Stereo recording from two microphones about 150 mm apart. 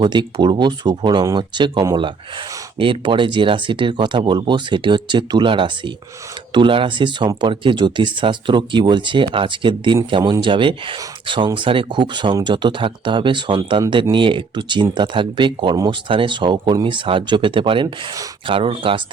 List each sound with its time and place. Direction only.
0.0 s speech: 30° right (ahead or behind)